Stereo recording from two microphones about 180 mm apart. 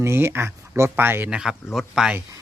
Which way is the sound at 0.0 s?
15° right (ahead or behind).